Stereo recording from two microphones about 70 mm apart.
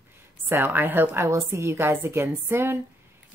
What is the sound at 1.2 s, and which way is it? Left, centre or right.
Speech, right.